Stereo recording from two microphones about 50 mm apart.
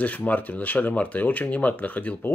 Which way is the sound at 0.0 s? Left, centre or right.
Left.